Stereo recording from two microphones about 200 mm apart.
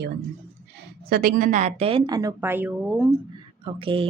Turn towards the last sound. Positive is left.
turn(degrees=-25)  # may be behind; listen again after turning